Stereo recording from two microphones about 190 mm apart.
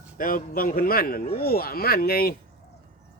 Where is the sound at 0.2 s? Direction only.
45° left (ahead or behind).